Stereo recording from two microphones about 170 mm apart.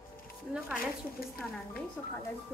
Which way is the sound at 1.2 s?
60° left (ahead or behind).